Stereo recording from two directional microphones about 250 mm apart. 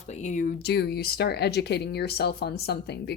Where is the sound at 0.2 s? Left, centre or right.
Left.